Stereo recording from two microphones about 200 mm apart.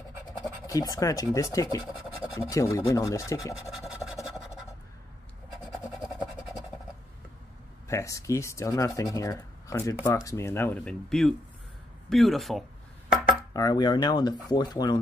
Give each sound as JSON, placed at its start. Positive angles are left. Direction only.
{"t": 0.7, "sound": "speech", "side_deg": 15}
{"t": 3.5, "sound": "scratch", "side_deg": 0}
{"t": 7.9, "sound": "speech", "side_deg": 15}
{"t": 13.5, "sound": "speech", "side_deg": 20}